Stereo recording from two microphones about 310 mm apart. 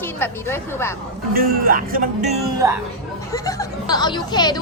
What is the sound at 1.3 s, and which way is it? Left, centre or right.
Speech, right.